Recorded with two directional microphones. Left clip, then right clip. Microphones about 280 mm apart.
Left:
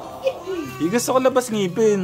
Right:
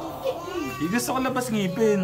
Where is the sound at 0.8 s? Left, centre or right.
Left.